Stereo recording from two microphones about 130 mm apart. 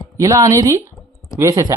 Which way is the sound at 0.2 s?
25° right (ahead or behind).